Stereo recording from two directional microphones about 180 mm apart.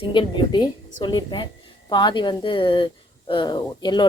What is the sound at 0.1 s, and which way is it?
Speech, 25° left (ahead or behind).